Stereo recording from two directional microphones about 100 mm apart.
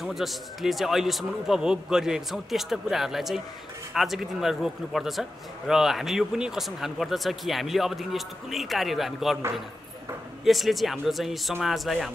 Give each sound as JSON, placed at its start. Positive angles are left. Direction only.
{"t": 0.0, "sound": "speech", "side_deg": 0}
{"t": 10.4, "sound": "speech", "side_deg": 0}